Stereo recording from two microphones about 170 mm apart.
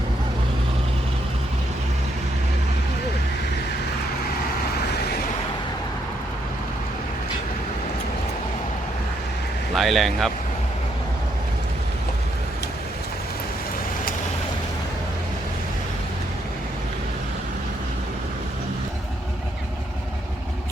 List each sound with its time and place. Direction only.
9.7 s speech: centre (ahead or behind)